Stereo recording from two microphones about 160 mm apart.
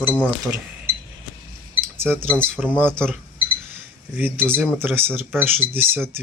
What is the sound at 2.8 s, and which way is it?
Speech, 10° right (ahead or behind).